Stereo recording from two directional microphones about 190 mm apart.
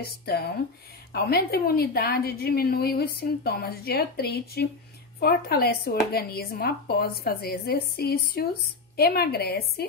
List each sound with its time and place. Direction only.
0.0 s a woman's voice: 55° left (ahead or behind)